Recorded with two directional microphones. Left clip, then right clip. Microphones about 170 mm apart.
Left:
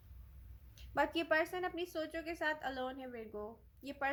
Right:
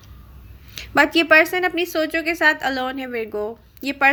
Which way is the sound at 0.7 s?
20° right (ahead or behind).